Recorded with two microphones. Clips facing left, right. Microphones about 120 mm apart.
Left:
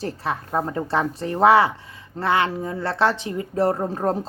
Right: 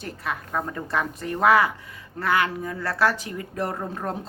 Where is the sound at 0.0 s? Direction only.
30° left (ahead or behind).